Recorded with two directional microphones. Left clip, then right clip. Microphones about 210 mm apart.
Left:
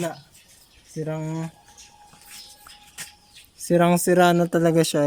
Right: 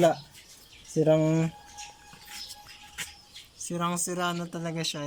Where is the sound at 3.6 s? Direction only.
50° left (ahead or behind).